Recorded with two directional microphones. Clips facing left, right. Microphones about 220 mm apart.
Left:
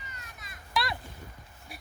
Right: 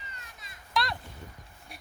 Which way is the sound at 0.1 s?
30° right (ahead or behind).